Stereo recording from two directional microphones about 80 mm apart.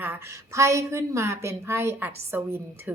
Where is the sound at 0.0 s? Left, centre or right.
Right.